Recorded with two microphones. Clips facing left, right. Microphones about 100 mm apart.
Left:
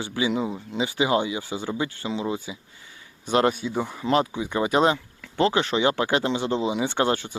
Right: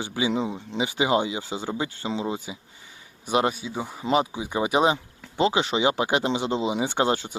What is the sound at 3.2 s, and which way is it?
Speech, 15° right (ahead or behind).